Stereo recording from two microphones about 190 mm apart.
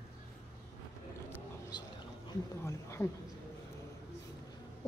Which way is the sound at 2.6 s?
15° left (ahead or behind).